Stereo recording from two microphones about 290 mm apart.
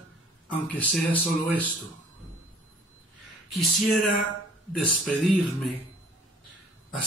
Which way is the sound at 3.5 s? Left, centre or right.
Centre.